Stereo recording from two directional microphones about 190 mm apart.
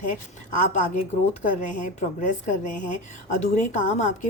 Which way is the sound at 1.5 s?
40° left (ahead or behind).